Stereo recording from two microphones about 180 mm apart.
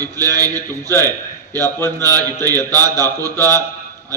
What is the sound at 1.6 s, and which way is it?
Speech, 15° left (ahead or behind).